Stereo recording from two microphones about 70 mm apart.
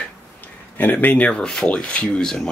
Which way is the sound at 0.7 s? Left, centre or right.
Left.